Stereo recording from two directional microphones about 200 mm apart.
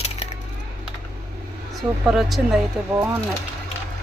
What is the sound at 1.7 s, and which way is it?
Speech, centre (ahead or behind).